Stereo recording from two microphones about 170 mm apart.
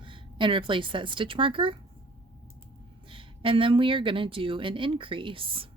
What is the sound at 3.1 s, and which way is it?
Speech, 30° right (ahead or behind).